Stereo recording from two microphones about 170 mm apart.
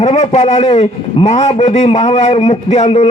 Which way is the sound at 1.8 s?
25° left (ahead or behind).